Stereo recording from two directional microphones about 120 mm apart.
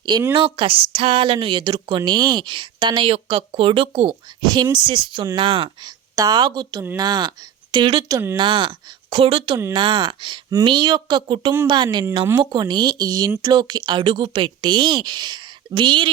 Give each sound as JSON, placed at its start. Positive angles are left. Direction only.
{"t": 0.0, "sound": "speech", "side_deg": -35}
{"t": 8.0, "sound": "speech", "side_deg": -25}
{"t": 8.4, "sound": "speech", "side_deg": -45}